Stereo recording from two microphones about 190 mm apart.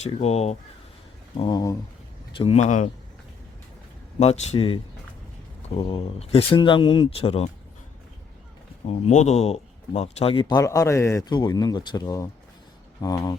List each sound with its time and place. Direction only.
0.0 s speech: 35° left (ahead or behind)
1.4 s speech: 20° left (ahead or behind); by 2.9 s 40° left (ahead or behind)
4.2 s speech: 35° left (ahead or behind)
8.9 s speech: 35° left (ahead or behind)
10.4 s speech: 15° left (ahead or behind)